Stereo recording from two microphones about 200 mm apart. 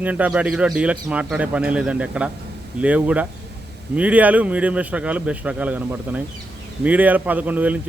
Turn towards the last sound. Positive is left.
turn(degrees=-10)  # may be behind; listen again after turning